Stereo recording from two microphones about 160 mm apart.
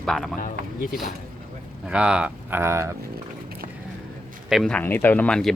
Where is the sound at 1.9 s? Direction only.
5° right (ahead or behind).